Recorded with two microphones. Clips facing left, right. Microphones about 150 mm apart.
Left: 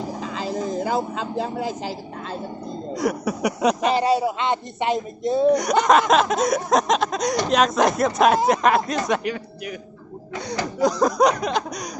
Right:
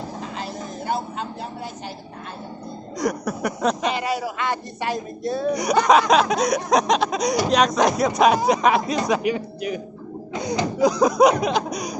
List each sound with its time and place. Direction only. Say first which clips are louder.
0.9 s speech: left 5 dB; 90° left
2.9 s speech: left 1 dB; 5° left (ahead or behind)
3.9 s speech: left 5 dB; 30° left (ahead or behind)
5.5 s speech: even; centre (ahead or behind)
9.3 s a man's voice: right 5 dB; 25° right (ahead or behind)
10.8 s speech: right 2 dB; centre (ahead or behind)